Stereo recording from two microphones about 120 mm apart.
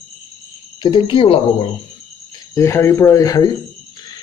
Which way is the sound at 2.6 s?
20° left (ahead or behind).